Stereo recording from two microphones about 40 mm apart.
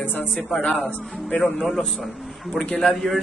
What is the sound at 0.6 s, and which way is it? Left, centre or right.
Speech, left.